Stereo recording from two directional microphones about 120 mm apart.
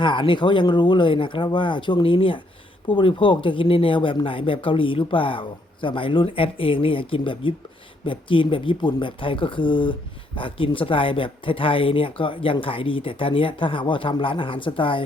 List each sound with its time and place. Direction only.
0.0 s speech: 45° left (ahead or behind)